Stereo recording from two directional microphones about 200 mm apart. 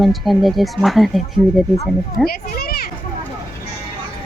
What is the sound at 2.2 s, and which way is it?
Children playing, 50° left (ahead or behind).